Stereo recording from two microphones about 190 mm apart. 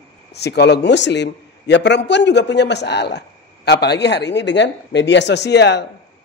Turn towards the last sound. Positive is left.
turn(degrees=65)  # may be behind; listen again after turning